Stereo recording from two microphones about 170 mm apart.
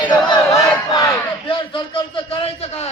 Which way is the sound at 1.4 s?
30° left (ahead or behind).